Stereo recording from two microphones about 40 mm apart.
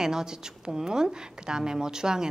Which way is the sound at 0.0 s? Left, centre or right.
Centre.